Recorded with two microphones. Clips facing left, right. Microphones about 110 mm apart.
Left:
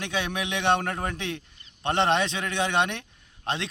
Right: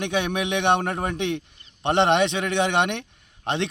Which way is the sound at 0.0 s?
20° right (ahead or behind).